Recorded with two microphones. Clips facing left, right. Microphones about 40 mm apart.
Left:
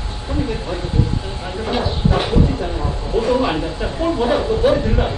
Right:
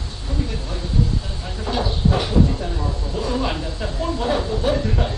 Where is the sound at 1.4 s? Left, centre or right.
Left.